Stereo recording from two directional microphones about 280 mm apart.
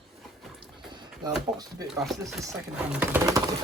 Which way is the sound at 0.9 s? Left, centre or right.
Centre.